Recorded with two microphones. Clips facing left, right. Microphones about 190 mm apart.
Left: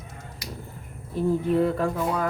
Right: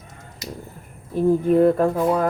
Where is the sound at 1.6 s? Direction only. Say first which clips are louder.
Right 7 dB; 45° right (ahead or behind).